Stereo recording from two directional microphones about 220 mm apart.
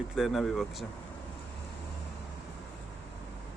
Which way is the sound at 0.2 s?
Centre (ahead or behind).